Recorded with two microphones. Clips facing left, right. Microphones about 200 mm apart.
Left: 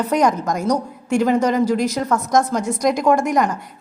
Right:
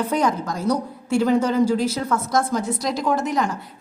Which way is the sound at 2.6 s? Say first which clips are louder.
Left 5 dB; 45° left (ahead or behind).